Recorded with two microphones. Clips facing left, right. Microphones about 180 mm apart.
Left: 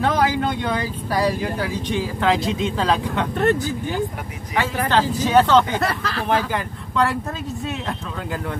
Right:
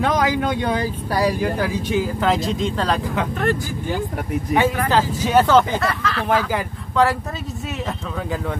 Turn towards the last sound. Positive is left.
turn(degrees=0)  # may be behind; listen again after turning